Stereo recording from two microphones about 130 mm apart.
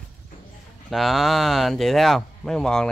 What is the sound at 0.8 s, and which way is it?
Speech, centre (ahead or behind).